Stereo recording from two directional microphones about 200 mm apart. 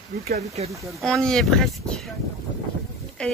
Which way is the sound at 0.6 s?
30° right (ahead or behind).